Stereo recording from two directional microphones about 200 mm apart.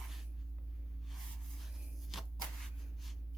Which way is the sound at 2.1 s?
Centre (ahead or behind).